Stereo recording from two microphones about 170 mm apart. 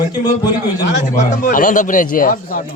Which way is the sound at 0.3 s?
25° left (ahead or behind).